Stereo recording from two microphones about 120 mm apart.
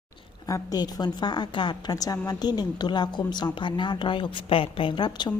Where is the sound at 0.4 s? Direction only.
30° left (ahead or behind).